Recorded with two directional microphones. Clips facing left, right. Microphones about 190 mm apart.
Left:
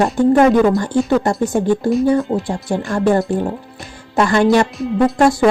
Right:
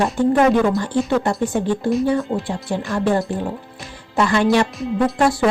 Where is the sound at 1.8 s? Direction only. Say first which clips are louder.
Left 4 dB; 40° left (ahead or behind).